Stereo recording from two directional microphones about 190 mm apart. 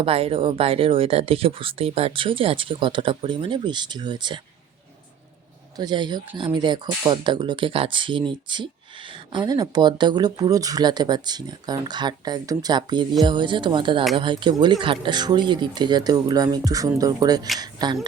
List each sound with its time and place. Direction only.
0.0 s speech: 30° right (ahead or behind)
5.7 s speech: 20° right (ahead or behind)